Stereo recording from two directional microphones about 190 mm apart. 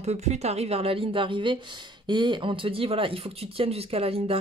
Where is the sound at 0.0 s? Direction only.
35° right (ahead or behind).